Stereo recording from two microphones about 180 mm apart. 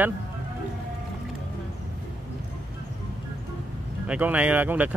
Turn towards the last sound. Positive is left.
turn(degrees=-10)  # may be behind; listen again after turning